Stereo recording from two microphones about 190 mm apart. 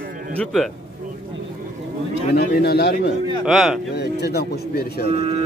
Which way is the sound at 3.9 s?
60° left (ahead or behind).